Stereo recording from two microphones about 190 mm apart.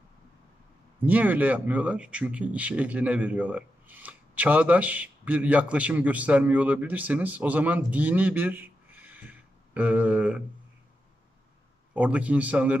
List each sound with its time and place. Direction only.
1.0 s speech: 10° right (ahead or behind)
11.9 s speech: 10° right (ahead or behind)